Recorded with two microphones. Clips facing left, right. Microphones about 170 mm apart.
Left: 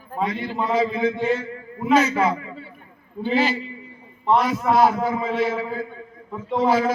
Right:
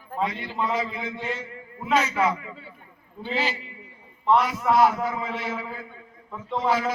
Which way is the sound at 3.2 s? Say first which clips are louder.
Left 7 dB; 50° left (ahead or behind).